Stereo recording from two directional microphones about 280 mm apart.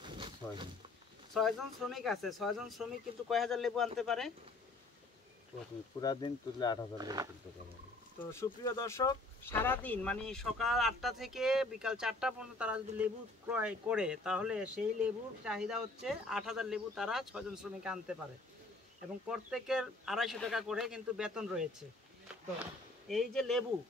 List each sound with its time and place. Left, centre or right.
0.0 s a sound: centre
1.3 s speech: centre
5.9 s speech: centre
7.0 s speech: centre
8.2 s speech: centre
19.2 s speech: centre